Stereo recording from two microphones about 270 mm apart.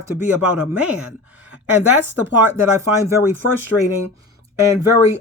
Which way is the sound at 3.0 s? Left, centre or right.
Centre.